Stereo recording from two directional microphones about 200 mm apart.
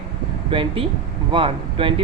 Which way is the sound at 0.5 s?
25° right (ahead or behind).